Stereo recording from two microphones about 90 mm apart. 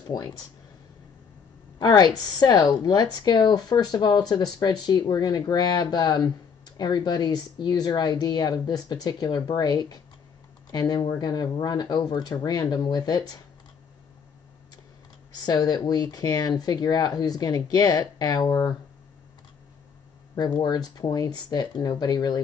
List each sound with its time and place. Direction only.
0.0 s speech: 45° left (ahead or behind)
1.8 s speech: 50° left (ahead or behind)
15.4 s speech: 50° left (ahead or behind)
20.6 s speech: 50° left (ahead or behind)